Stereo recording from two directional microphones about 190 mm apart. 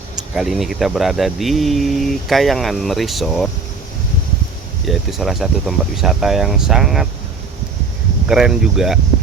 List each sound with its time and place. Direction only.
0.3 s speech: centre (ahead or behind)
4.9 s speech: centre (ahead or behind)
8.3 s speech: 5° right (ahead or behind)